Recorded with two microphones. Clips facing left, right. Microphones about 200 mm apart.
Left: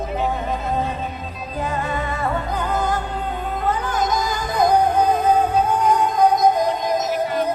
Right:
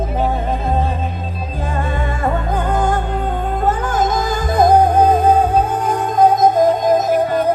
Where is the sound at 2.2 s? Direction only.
50° right (ahead or behind).